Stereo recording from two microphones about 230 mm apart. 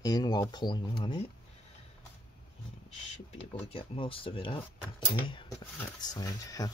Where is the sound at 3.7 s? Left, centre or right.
Left.